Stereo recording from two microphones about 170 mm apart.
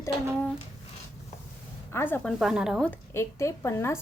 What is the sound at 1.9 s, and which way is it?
Speech, 15° left (ahead or behind).